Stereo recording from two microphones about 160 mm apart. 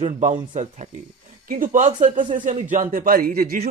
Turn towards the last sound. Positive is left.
turn(degrees=-70)  # may be behind; listen again after turning